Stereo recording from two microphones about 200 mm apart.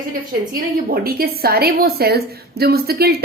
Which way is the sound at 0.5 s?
50° right (ahead or behind).